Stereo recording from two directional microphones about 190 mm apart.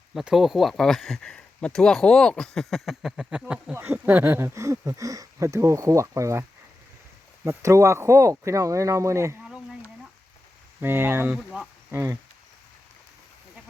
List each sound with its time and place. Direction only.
0.1 s speech: centre (ahead or behind)
7.4 s speech: 15° right (ahead or behind)
10.8 s speech: 10° right (ahead or behind)
11.3 s speech: centre (ahead or behind)
11.9 s speech: 15° right (ahead or behind)